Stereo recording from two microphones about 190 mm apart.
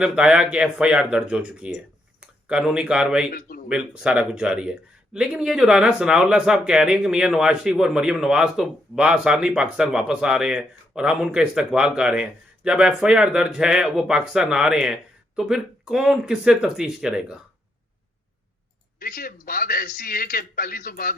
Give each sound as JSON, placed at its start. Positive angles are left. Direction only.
{"t": 0.0, "sound": "speech", "side_deg": -5}
{"t": 3.3, "sound": "speech", "side_deg": 50}
{"t": 3.7, "sound": "speech", "side_deg": -5}
{"t": 18.9, "sound": "a man's voice", "side_deg": 50}